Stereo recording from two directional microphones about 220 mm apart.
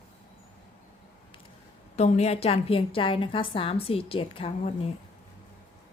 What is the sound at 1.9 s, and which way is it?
A woman's voice, 30° left (ahead or behind).